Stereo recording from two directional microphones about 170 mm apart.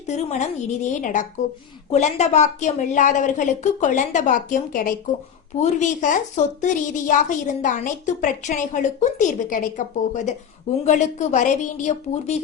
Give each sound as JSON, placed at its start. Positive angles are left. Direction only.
{"t": 0.1, "sound": "a woman's voice", "side_deg": 40}